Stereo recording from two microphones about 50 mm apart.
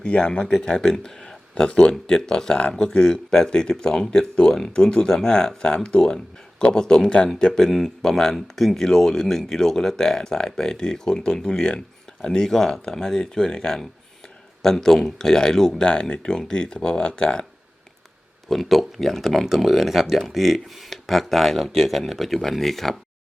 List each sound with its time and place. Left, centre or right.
0.0 s speech: left
18.4 s speech: centre